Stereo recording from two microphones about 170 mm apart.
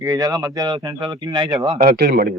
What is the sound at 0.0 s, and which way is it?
Speech, 20° right (ahead or behind).